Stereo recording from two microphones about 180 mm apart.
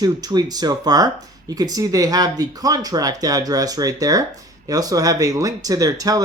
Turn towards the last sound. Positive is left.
turn(degrees=-20)  # may be behind; listen again after turning